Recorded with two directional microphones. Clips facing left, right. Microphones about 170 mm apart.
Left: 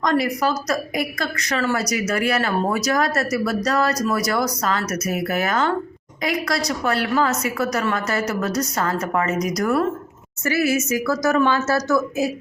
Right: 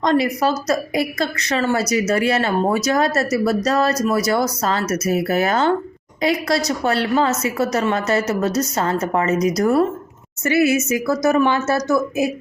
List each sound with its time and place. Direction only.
0.0 s a woman's voice: 25° right (ahead or behind)